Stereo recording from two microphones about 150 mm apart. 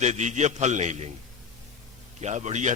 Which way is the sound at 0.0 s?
50° right (ahead or behind).